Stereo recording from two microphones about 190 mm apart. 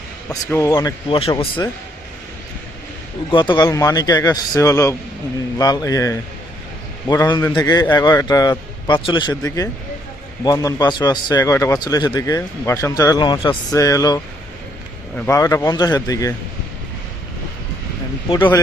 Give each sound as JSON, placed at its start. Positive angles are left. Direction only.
{"t": 0.3, "sound": "speech", "side_deg": 15}
{"t": 3.3, "sound": "a man's voice", "side_deg": 25}
{"t": 15.3, "sound": "a man's voice", "side_deg": 15}
{"t": 18.3, "sound": "speech", "side_deg": 25}